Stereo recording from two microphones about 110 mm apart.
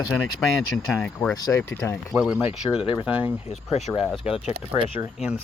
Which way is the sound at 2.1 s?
10° right (ahead or behind).